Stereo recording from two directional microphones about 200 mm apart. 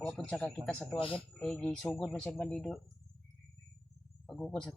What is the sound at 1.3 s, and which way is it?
Speech, 5° left (ahead or behind).